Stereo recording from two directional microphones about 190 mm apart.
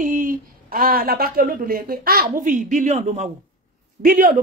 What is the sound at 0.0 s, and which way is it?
A woman's voice, 45° right (ahead or behind).